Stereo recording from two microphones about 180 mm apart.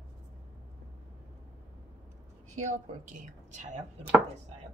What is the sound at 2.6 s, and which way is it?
Speech, 40° right (ahead or behind).